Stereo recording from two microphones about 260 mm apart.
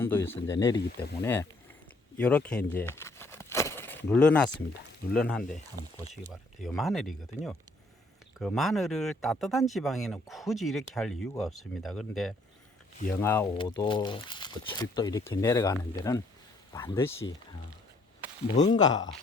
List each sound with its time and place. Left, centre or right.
0.0 s speech: centre
2.1 s a sound: centre
5.1 s speech: centre
5.8 s speech: right
6.6 s speech: centre
18.4 s speech: left